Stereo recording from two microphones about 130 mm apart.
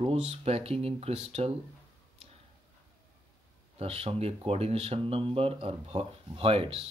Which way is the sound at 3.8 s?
50° right (ahead or behind).